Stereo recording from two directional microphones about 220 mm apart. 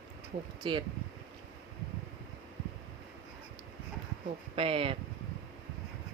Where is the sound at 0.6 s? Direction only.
20° right (ahead or behind).